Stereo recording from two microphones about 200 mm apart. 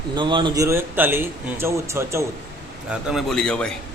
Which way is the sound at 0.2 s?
25° right (ahead or behind).